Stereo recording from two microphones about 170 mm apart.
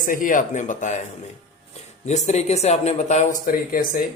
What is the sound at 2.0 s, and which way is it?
Speech, 40° left (ahead or behind).